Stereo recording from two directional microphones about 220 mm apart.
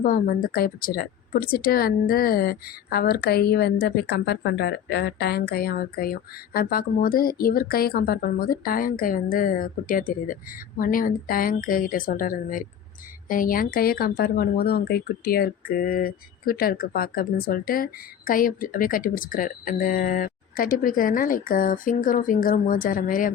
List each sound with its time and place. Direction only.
0.0 s a woman's voice: 40° left (ahead or behind)